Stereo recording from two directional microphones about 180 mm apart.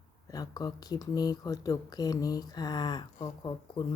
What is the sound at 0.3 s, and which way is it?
Speech, 20° left (ahead or behind).